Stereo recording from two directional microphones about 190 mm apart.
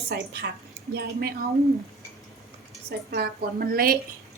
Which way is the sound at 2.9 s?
55° right (ahead or behind).